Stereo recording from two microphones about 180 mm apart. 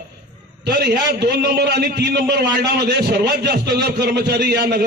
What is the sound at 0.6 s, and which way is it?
A man's voice, 65° right (ahead or behind).